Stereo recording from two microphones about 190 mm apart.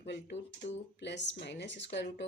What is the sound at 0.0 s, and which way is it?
Speech, 60° left (ahead or behind).